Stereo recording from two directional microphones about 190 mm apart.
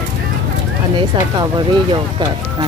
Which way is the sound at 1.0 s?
25° right (ahead or behind).